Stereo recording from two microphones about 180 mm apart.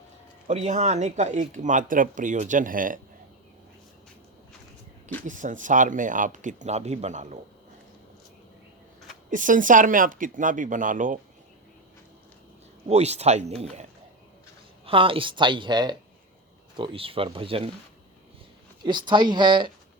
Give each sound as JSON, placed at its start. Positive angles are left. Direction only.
{"t": 0.4, "sound": "speech", "side_deg": -40}
{"t": 5.2, "sound": "speech", "side_deg": -45}
{"t": 9.3, "sound": "speech", "side_deg": -45}
{"t": 12.9, "sound": "speech", "side_deg": -35}
{"t": 14.8, "sound": "speech", "side_deg": -30}
{"t": 18.9, "sound": "speech", "side_deg": -25}